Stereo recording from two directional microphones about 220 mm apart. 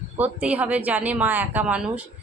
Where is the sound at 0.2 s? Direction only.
5° right (ahead or behind).